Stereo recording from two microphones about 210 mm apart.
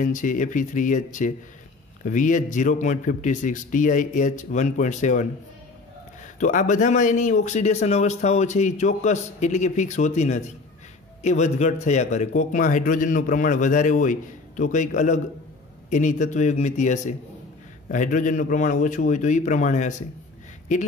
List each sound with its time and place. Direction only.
0.0 s speech: 40° left (ahead or behind)
6.4 s speech: 35° left (ahead or behind)